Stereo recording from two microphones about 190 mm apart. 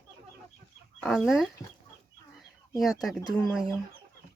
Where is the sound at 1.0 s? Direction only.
Centre (ahead or behind).